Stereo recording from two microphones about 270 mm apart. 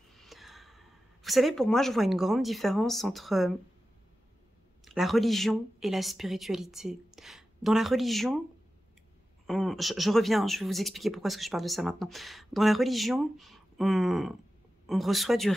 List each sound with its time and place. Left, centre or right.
0.1 s a sound: centre
1.2 s speech: centre
4.8 s speech: centre
9.5 s speech: centre